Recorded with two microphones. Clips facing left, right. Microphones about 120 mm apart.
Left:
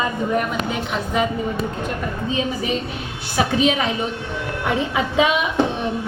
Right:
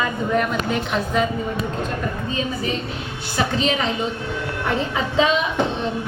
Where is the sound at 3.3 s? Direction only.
10° left (ahead or behind).